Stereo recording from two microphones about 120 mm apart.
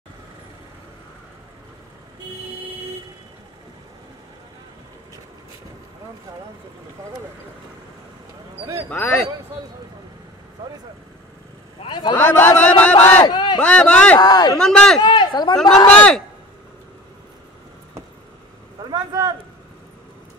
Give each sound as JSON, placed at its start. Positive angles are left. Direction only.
{"t": 8.9, "sound": "speech", "side_deg": 15}
{"t": 11.8, "sound": "a man's voice", "side_deg": 40}
{"t": 12.2, "sound": "speech", "side_deg": 20}
{"t": 13.2, "sound": "speech", "side_deg": 40}
{"t": 13.6, "sound": "speech", "side_deg": 10}
{"t": 14.2, "sound": "speech", "side_deg": 35}
{"t": 14.6, "sound": "speech", "side_deg": 5}
{"t": 15.0, "sound": "speech", "side_deg": 40}
{"t": 15.9, "sound": "speech", "side_deg": 10}
{"t": 18.9, "sound": "a sound", "side_deg": -35}